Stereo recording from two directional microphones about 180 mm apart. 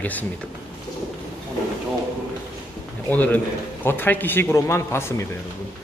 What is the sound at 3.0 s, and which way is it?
A man's voice, 10° left (ahead or behind).